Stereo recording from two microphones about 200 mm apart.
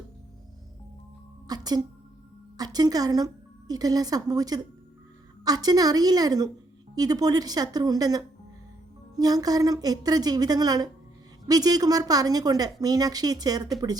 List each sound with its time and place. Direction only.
1.5 s a woman's voice: 20° right (ahead or behind)